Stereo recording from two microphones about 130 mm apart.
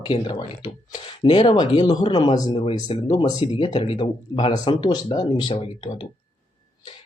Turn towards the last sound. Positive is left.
turn(degrees=35)  # may be behind; listen again after turning